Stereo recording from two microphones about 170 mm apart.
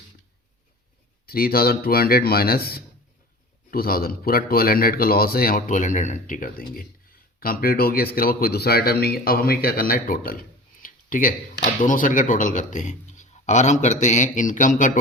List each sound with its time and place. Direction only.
1.3 s speech: 65° left (ahead or behind)